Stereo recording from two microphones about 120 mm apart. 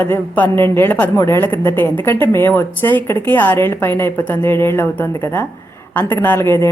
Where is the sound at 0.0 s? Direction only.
15° left (ahead or behind).